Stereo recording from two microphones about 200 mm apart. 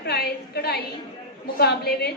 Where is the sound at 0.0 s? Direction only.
55° left (ahead or behind).